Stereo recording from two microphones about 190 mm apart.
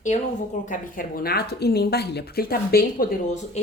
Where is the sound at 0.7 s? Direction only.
50° left (ahead or behind).